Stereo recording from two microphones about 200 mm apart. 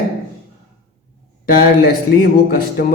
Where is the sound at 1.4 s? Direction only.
45° left (ahead or behind).